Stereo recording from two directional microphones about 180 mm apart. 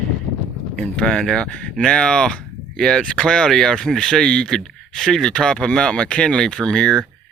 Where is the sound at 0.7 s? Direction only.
5° left (ahead or behind).